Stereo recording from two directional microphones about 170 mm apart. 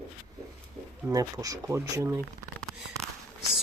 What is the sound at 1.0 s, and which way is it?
Speech, 20° right (ahead or behind).